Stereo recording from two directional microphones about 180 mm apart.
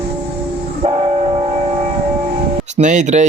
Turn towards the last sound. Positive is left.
turn(degrees=-40)  # may be behind; listen again after turning